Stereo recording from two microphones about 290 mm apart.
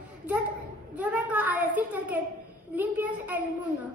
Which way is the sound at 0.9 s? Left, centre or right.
Centre.